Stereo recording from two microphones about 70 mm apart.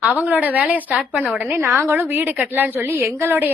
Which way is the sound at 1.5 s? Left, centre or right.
Right.